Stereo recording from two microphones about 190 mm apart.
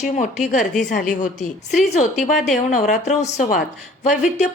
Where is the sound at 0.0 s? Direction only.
40° left (ahead or behind).